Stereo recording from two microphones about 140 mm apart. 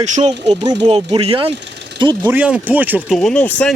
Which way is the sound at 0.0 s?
55° right (ahead or behind).